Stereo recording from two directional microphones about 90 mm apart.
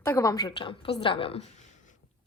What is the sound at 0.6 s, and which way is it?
Speech, 80° left.